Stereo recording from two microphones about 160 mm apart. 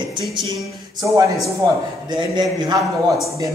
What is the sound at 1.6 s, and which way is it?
Speech, 25° right (ahead or behind).